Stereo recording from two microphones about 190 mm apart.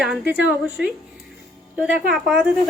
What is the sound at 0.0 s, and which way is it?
Speech, 5° right (ahead or behind).